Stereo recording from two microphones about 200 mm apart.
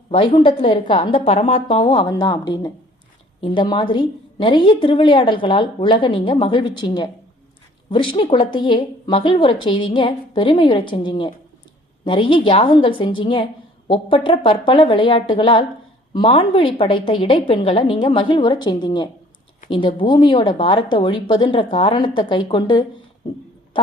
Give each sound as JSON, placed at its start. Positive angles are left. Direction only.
{"t": 0.1, "sound": "a woman's voice", "side_deg": 25}